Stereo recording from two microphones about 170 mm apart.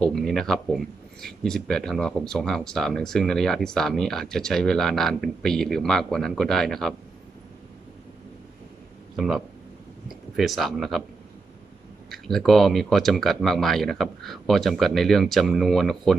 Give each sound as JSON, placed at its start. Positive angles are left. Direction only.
{"t": 0.0, "sound": "speech", "side_deg": 0}
{"t": 9.1, "sound": "speech", "side_deg": 0}
{"t": 12.1, "sound": "speech", "side_deg": 0}